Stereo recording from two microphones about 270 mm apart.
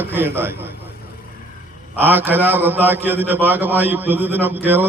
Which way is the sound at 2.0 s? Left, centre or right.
Centre.